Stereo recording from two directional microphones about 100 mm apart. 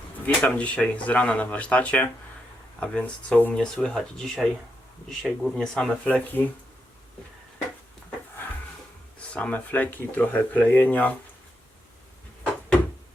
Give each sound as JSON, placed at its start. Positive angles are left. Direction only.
{"t": 0.4, "sound": "speech", "side_deg": 15}
{"t": 6.1, "sound": "speech", "side_deg": 15}
{"t": 9.3, "sound": "speech", "side_deg": 15}